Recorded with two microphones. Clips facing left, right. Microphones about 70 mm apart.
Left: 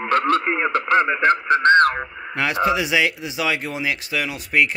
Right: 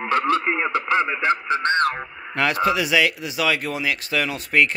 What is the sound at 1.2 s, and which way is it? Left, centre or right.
Speech, left.